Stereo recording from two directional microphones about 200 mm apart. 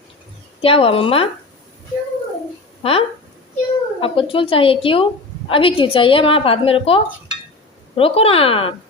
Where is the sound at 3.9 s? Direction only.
25° left (ahead or behind).